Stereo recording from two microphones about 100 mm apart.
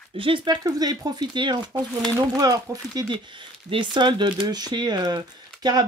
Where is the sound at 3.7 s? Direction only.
55° right (ahead or behind).